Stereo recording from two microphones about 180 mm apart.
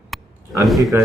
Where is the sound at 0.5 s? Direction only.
Centre (ahead or behind).